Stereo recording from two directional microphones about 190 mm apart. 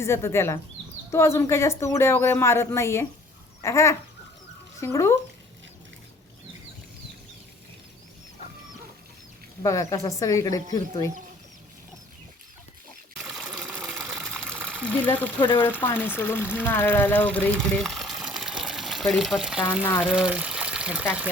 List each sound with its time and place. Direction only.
0.0 s a woman's voice: 15° left (ahead or behind)
9.6 s a woman's voice: 15° left (ahead or behind)
13.2 s water: centre (ahead or behind)
14.8 s a woman's voice: 10° left (ahead or behind)
15.4 s speech: 25° left (ahead or behind)
15.8 s speech: 10° left (ahead or behind); by 21.2 s 5° right (ahead or behind)